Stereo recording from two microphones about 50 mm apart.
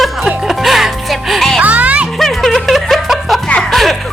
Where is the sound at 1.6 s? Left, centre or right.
Right.